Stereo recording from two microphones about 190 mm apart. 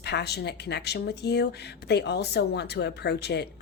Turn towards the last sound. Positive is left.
turn(degrees=60)  # may be behind; listen again after turning